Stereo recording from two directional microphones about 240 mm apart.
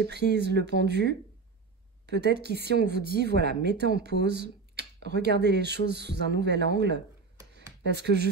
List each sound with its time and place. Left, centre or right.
0.0 s speech: right